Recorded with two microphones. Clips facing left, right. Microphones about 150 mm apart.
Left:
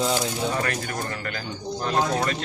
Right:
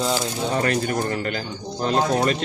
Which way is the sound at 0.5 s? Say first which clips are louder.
Right 6 dB; 25° right (ahead or behind).